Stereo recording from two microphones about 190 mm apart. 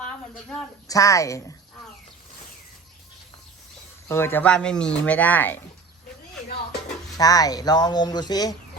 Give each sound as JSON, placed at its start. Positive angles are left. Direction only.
{"t": 0.0, "sound": "a sound", "side_deg": 5}
{"t": 0.9, "sound": "speech", "side_deg": 15}
{"t": 4.1, "sound": "speech", "side_deg": 10}
{"t": 7.2, "sound": "speech", "side_deg": 20}